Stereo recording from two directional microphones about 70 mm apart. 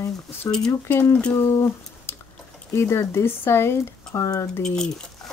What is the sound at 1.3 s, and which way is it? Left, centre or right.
Speech, left.